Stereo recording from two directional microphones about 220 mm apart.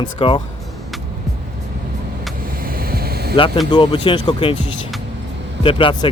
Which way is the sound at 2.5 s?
40° right (ahead or behind).